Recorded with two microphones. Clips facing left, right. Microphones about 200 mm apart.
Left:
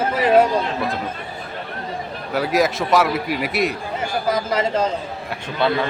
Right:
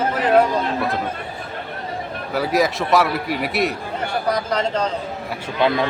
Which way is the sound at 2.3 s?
Centre (ahead or behind).